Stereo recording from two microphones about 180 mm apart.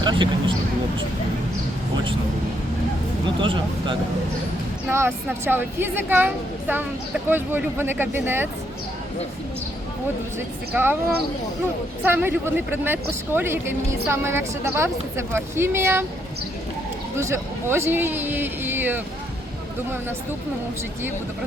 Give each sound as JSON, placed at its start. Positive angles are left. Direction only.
{"t": 0.0, "sound": "speech", "side_deg": -25}
{"t": 3.4, "sound": "speech", "side_deg": -30}
{"t": 4.9, "sound": "speech", "side_deg": -15}
{"t": 10.7, "sound": "speech", "side_deg": -10}
{"t": 17.2, "sound": "speech", "side_deg": -15}